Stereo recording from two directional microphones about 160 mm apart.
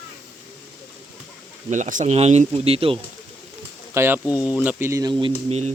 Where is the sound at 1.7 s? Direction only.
50° right (ahead or behind).